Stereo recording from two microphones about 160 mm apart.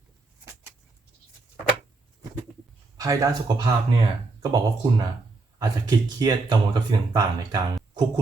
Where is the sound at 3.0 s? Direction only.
25° right (ahead or behind).